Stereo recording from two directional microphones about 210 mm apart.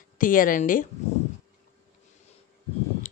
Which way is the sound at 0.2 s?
40° left (ahead or behind).